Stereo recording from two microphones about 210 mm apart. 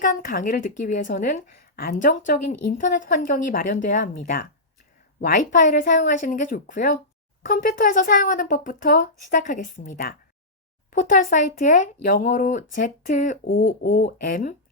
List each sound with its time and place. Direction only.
0.0 s a woman's voice: 40° left (ahead or behind)